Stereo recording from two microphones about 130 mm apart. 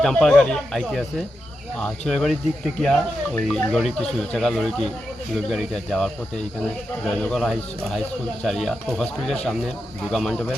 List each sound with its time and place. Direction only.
0.0 s speech: centre (ahead or behind)